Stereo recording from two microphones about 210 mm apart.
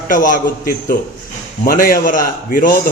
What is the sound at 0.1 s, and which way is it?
A man's voice, 40° left (ahead or behind).